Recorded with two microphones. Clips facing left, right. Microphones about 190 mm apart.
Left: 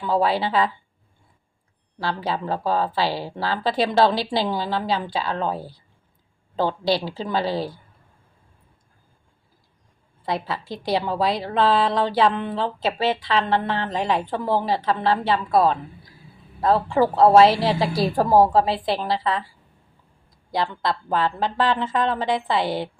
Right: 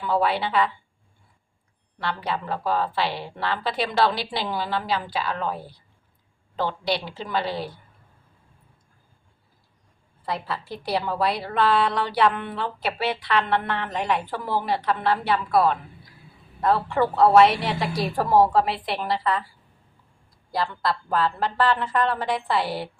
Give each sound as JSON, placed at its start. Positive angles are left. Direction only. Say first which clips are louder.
{"t": 0.1, "sound": "a woman's voice", "louder": "left 2 dB", "side_deg": 30}
{"t": 2.0, "sound": "a woman's voice", "louder": "left 3 dB", "side_deg": 30}
{"t": 10.6, "sound": "a woman's voice", "louder": "left 4 dB", "side_deg": 90}
{"t": 11.6, "sound": "a woman's voice", "louder": "left 2 dB", "side_deg": 25}
{"t": 20.5, "sound": "a woman's voice", "louder": "left 2 dB", "side_deg": 20}